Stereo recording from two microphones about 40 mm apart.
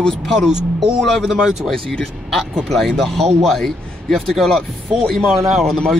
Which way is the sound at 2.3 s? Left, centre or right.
Centre.